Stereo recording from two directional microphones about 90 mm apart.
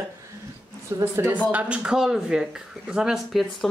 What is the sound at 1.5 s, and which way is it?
Speech, 15° right (ahead or behind).